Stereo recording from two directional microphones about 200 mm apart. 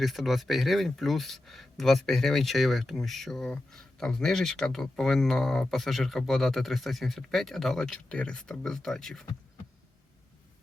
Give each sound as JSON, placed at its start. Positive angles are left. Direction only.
{"t": 0.0, "sound": "speech", "side_deg": 0}